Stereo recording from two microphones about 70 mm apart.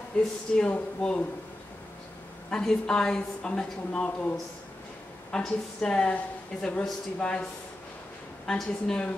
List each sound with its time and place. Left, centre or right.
0.2 s a woman's voice: centre
2.5 s a woman's voice: centre
8.5 s a woman's voice: centre